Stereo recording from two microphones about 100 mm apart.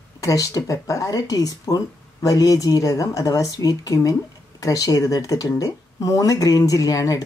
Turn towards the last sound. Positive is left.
turn(degrees=35)  # may be behind; listen again after turning